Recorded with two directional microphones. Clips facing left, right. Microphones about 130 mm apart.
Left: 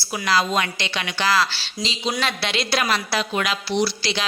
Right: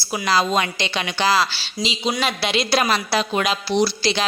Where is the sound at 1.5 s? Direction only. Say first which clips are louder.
Right 3 dB; 5° right (ahead or behind).